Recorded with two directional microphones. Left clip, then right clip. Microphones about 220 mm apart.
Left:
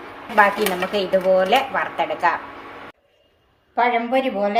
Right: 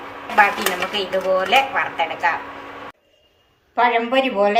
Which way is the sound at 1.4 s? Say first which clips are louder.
Right 1 dB; 30° left (ahead or behind).